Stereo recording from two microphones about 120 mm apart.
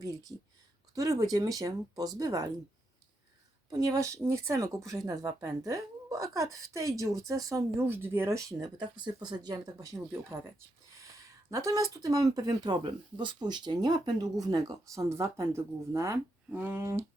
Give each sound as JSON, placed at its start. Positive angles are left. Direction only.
{"t": 0.0, "sound": "speech", "side_deg": -30}
{"t": 3.7, "sound": "speech", "side_deg": -30}
{"t": 8.8, "sound": "speech", "side_deg": -40}
{"t": 11.5, "sound": "speech", "side_deg": -30}